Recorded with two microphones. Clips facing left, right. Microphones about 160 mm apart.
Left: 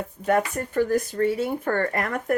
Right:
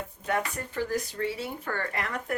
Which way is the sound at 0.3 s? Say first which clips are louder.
Left 8 dB; 50° left (ahead or behind).